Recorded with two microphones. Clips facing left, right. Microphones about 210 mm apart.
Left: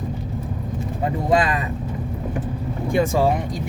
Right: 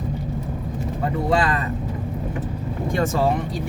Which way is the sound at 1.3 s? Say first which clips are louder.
Left 2 dB; 15° left (ahead or behind).